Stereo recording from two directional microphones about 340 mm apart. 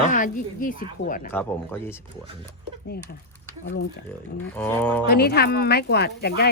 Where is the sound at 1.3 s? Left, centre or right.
Centre.